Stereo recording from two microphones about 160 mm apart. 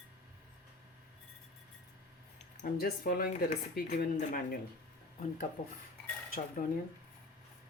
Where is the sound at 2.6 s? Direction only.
70° left (ahead or behind).